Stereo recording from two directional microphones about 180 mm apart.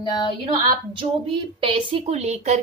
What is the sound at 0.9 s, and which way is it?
A woman's voice, 30° right (ahead or behind).